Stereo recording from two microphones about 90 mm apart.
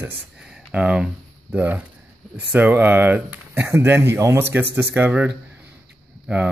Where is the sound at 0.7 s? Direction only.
10° right (ahead or behind).